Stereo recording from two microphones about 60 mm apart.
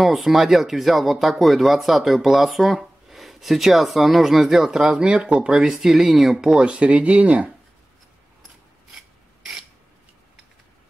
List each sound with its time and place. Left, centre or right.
0.0 s speech: centre
6.6 s speech: centre
9.4 s a sound: centre